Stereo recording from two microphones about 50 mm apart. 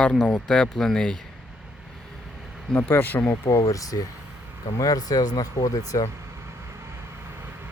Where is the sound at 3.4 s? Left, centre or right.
Left.